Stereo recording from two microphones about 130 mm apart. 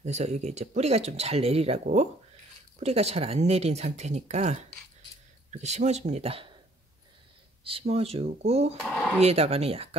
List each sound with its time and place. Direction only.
0.0 s speech: 60° right (ahead or behind)
7.6 s speech: 50° right (ahead or behind)
8.8 s a sound: 5° right (ahead or behind)
9.2 s speech: 50° right (ahead or behind)